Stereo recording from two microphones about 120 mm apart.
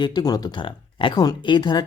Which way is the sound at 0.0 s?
35° left (ahead or behind).